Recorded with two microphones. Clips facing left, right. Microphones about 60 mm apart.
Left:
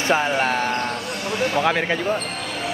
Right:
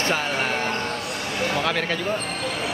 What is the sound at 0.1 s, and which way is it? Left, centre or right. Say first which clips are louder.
Speech: left 5 dB; left.